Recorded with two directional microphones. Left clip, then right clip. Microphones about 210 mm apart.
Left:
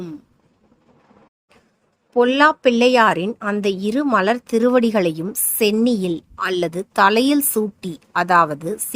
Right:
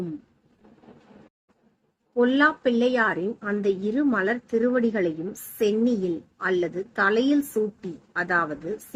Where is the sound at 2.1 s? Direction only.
45° left (ahead or behind).